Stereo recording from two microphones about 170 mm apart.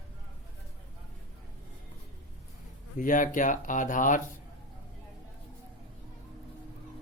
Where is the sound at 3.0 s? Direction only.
50° left (ahead or behind).